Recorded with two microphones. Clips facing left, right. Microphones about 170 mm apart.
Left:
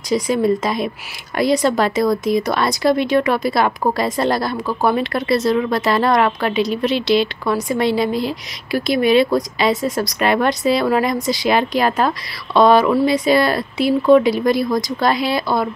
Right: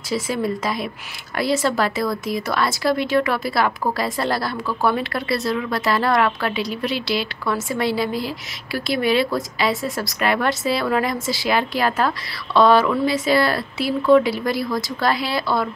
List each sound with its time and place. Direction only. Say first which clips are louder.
0.1 s speech: left 6 dB; 20° left (ahead or behind)